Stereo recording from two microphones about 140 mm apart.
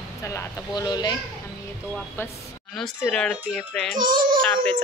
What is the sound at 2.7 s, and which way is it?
Speech, 5° left (ahead or behind).